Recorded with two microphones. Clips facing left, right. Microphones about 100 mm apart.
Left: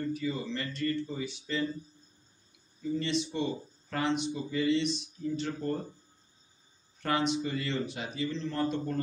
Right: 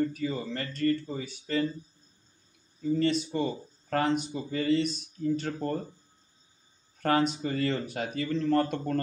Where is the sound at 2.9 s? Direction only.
45° right (ahead or behind).